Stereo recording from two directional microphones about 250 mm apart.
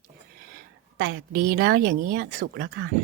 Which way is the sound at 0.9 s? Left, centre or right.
Right.